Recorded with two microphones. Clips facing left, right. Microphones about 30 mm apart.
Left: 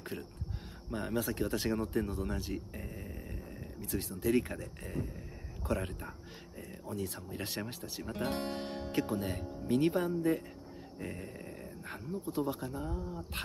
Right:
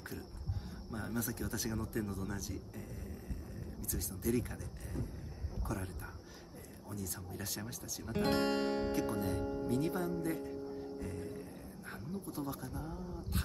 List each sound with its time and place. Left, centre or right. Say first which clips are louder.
0.1 s speech: left 3 dB; left
8.2 s speech: right 5 dB; right
8.9 s speech: left 1 dB; left
11.0 s grunt: even; left
12.3 s speech: left 8 dB; left